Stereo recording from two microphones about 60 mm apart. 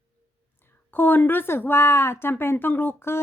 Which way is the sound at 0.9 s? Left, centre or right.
Left.